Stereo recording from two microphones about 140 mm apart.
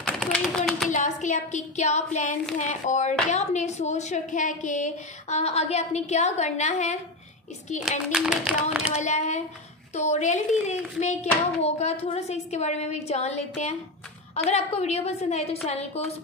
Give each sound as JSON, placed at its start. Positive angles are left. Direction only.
{"t": 0.0, "sound": "tap", "side_deg": 5}
{"t": 0.8, "sound": "a sound", "side_deg": 60}
{"t": 2.5, "sound": "a woman's voice", "side_deg": 60}
{"t": 8.1, "sound": "clapping", "side_deg": -5}
{"t": 8.9, "sound": "a woman's voice", "side_deg": 55}